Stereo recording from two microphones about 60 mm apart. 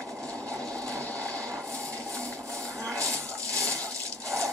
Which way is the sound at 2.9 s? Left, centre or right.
Right.